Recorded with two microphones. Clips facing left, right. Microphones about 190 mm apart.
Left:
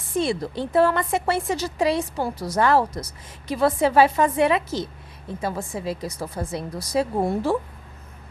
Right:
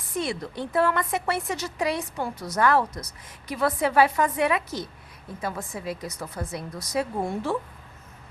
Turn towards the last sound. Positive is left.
turn(degrees=35)  # may be behind; listen again after turning